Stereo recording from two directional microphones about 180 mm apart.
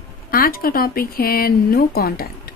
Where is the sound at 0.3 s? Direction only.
55° left (ahead or behind).